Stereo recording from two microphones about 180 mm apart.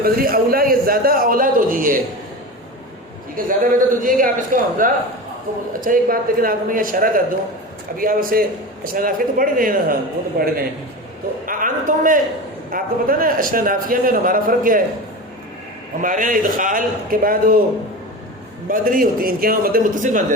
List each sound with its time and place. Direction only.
0.0 s a man's voice: 55° right (ahead or behind)
3.3 s a man's voice: 50° right (ahead or behind)
16.0 s a man's voice: 45° right (ahead or behind)
18.7 s a man's voice: 50° right (ahead or behind)